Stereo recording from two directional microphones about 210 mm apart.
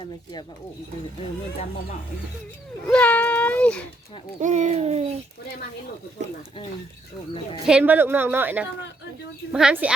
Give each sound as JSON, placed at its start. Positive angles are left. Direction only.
{"t": 2.9, "sound": "a child's voice", "side_deg": 5}
{"t": 4.4, "sound": "speech", "side_deg": -35}
{"t": 7.7, "sound": "a woman's voice", "side_deg": -5}